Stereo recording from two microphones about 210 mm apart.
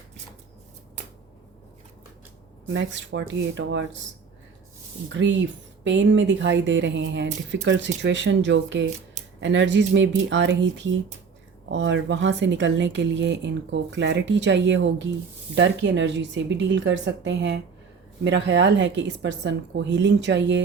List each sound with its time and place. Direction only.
2.6 s speech: 60° right (ahead or behind)
5.2 s speech: 60° right (ahead or behind)